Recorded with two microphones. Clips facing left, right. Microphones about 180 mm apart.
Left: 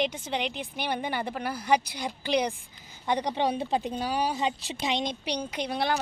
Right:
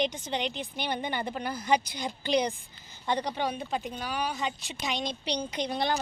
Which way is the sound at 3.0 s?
15° left (ahead or behind).